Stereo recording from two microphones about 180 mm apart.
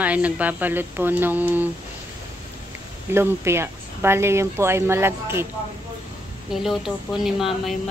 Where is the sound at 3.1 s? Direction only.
15° right (ahead or behind).